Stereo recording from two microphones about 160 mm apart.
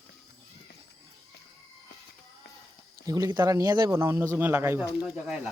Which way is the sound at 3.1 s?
20° right (ahead or behind).